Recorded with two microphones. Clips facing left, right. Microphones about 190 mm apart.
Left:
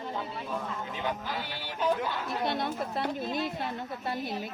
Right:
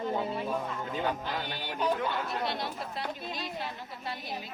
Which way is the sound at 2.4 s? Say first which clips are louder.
Left 4 dB; 55° left (ahead or behind).